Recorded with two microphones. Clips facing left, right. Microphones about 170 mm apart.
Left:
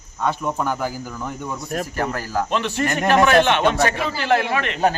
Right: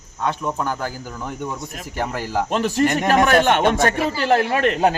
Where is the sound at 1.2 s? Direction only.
5° right (ahead or behind).